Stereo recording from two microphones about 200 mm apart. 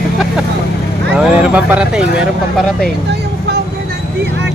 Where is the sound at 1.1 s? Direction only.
5° right (ahead or behind).